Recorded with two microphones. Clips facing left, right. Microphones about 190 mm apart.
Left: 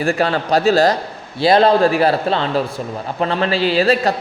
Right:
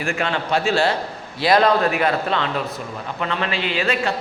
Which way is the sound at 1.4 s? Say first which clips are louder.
Left 4 dB; 30° left (ahead or behind).